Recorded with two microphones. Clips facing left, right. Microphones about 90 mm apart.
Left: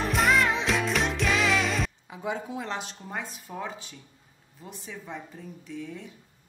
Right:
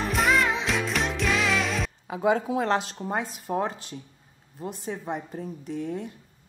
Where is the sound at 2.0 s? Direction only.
70° right (ahead or behind).